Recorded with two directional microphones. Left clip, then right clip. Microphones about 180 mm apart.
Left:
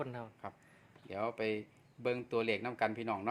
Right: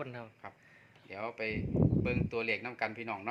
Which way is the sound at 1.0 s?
70° left (ahead or behind).